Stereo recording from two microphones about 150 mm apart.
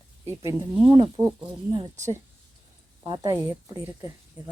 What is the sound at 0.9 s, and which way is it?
Speech, 20° right (ahead or behind).